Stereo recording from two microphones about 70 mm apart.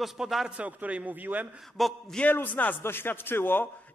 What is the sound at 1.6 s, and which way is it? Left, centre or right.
Speech, centre.